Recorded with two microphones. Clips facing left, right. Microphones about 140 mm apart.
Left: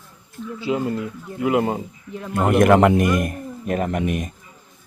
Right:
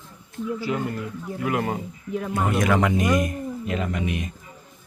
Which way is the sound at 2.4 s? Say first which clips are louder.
Left 8 dB; 60° left (ahead or behind).